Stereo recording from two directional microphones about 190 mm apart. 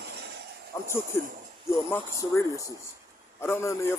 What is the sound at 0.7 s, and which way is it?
Speech, 15° left (ahead or behind).